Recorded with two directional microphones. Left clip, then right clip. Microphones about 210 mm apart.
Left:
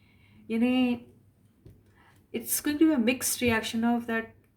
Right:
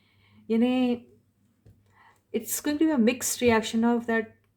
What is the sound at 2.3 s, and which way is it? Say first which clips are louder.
Speech: right 1 dB; 40° right (ahead or behind).